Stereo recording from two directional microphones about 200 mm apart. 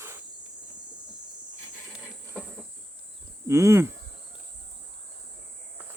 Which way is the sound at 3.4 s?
15° right (ahead or behind).